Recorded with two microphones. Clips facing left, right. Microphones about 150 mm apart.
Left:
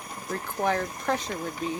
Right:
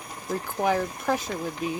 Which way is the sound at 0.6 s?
10° right (ahead or behind).